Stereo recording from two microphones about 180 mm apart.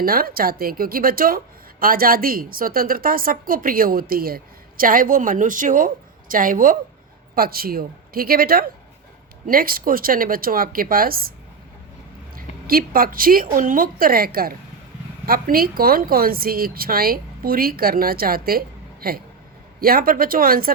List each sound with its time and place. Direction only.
0.0 s a woman's voice: 55° right (ahead or behind)
12.4 s a woman's voice: 55° right (ahead or behind)